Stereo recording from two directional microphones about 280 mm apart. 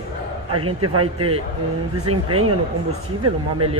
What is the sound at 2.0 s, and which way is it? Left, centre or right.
Speech, right.